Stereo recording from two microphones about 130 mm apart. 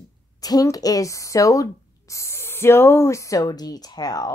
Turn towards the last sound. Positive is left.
turn(degrees=30)  # may be behind; listen again after turning